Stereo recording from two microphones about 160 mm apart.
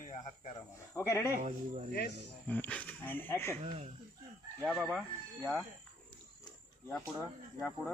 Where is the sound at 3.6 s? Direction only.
40° right (ahead or behind).